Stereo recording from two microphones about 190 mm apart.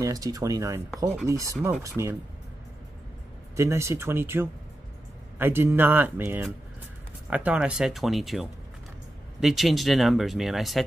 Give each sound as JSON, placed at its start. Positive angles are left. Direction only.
{"t": 0.0, "sound": "speech", "side_deg": -20}
{"t": 3.5, "sound": "speech", "side_deg": -15}